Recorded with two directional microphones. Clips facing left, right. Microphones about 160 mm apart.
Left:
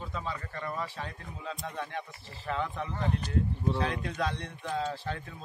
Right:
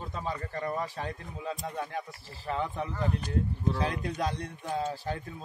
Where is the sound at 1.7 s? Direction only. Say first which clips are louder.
Right 2 dB; 35° right (ahead or behind).